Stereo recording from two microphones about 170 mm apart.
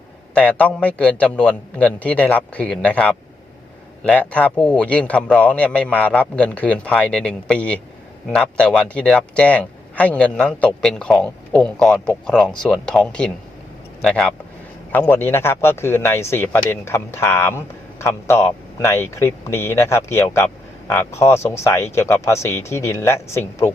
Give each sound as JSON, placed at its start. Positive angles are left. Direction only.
{"t": 0.3, "sound": "speech", "side_deg": 5}